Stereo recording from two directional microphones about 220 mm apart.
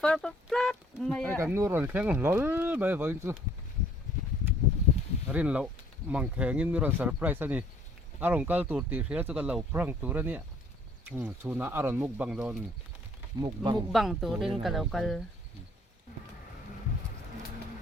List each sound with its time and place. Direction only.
0.0 s speech: 5° left (ahead or behind)
1.4 s speech: 10° right (ahead or behind)
5.3 s speech: 5° right (ahead or behind)
13.9 s speech: centre (ahead or behind)